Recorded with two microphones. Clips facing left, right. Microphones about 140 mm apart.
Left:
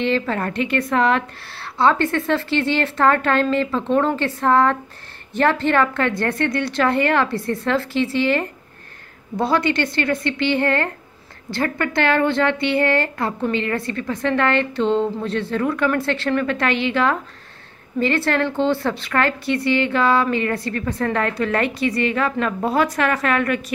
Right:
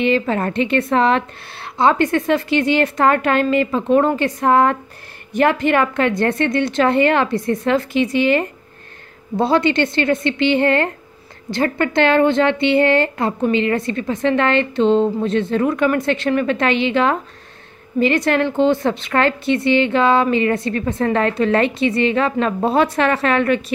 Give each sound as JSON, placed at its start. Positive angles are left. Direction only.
{"t": 0.0, "sound": "a woman's voice", "side_deg": -15}